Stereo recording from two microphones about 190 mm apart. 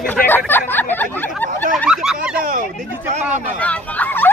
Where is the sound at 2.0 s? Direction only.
5° right (ahead or behind).